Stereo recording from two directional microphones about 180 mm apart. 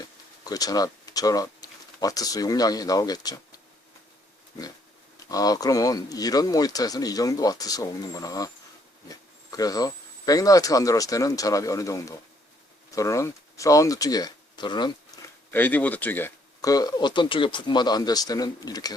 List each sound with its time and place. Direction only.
0.4 s speech: 20° left (ahead or behind)
5.3 s speech: 20° left (ahead or behind)
15.5 s speech: 10° left (ahead or behind)